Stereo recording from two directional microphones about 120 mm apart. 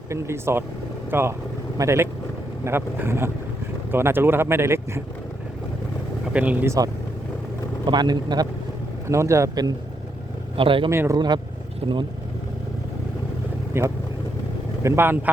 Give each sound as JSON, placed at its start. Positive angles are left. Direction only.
{"t": 0.1, "sound": "speech", "side_deg": -20}
{"t": 6.2, "sound": "speech", "side_deg": -10}
{"t": 7.9, "sound": "speech", "side_deg": -35}
{"t": 9.0, "sound": "speech", "side_deg": -25}
{"t": 10.6, "sound": "speech", "side_deg": -45}
{"t": 10.8, "sound": "speech", "side_deg": -25}
{"t": 11.8, "sound": "speech", "side_deg": -50}
{"t": 13.7, "sound": "speech", "side_deg": -20}